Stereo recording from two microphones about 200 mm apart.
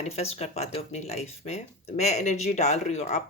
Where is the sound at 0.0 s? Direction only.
30° left (ahead or behind).